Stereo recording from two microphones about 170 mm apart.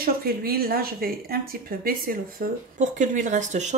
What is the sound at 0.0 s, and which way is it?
Speech, 60° right (ahead or behind).